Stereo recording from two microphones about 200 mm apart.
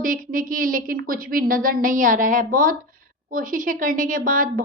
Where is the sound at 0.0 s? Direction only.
45° right (ahead or behind).